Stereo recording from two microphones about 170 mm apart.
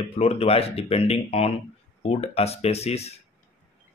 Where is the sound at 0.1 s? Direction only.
35° left (ahead or behind).